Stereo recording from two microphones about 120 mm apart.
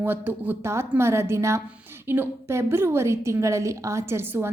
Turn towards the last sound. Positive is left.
turn(degrees=-20)  # may be behind; listen again after turning